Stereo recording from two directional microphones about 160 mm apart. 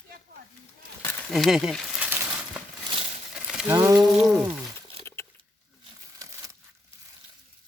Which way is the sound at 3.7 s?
20° right (ahead or behind).